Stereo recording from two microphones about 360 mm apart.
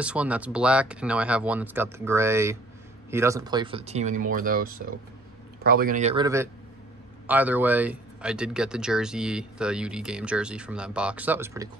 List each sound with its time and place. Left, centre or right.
0.0 s a man's voice: centre